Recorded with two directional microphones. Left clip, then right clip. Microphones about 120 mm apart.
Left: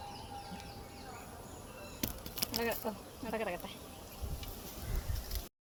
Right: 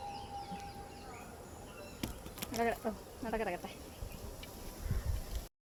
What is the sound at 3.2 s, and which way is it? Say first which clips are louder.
Speech: right 1 dB; 70° right (ahead or behind).